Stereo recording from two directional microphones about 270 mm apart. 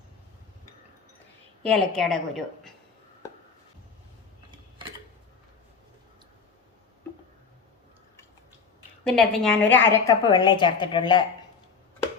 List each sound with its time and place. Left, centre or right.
1.6 s a woman's voice: centre
9.1 s a woman's voice: centre